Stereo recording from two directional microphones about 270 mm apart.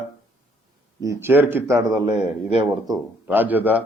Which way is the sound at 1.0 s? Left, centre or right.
Centre.